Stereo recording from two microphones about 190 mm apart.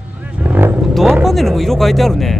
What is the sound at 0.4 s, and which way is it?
Vehicle, 10° right (ahead or behind).